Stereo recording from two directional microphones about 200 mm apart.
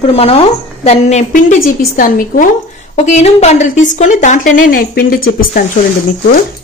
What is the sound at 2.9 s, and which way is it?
A woman's voice, 30° left (ahead or behind).